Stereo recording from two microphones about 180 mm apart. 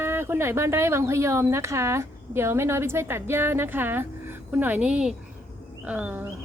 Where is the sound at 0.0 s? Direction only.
15° right (ahead or behind).